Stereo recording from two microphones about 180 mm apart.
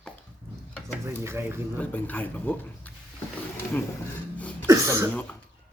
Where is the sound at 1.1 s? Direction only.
15° right (ahead or behind).